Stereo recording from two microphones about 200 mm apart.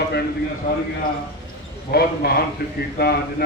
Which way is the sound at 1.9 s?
50° left (ahead or behind).